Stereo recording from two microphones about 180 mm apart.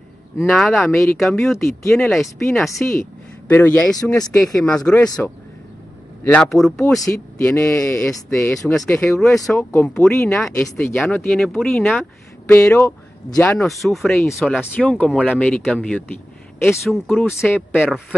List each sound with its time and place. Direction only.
0.5 s speech: centre (ahead or behind)
1.8 s speech: 15° left (ahead or behind)
2.0 s speech: centre (ahead or behind)
2.8 s speech: 15° left (ahead or behind)
4.0 s speech: 20° left (ahead or behind)
4.8 s speech: 5° left (ahead or behind)
12.4 s speech: 15° left (ahead or behind)
13.6 s speech: centre (ahead or behind)